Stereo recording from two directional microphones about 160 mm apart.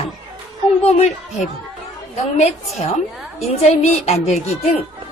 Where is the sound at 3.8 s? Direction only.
40° left (ahead or behind).